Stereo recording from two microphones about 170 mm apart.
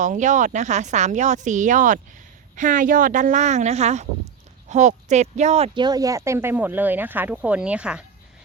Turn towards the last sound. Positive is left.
turn(degrees=-5)  # may be behind; listen again after turning